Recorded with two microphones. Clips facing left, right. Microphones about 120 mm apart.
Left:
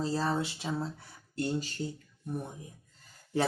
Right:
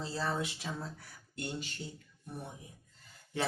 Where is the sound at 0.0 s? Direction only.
40° left (ahead or behind).